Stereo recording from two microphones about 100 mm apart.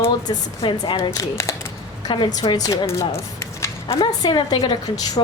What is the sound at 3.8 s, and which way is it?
Speech, 70° left (ahead or behind).